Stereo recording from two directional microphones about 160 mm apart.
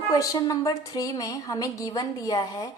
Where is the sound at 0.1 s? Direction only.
20° left (ahead or behind).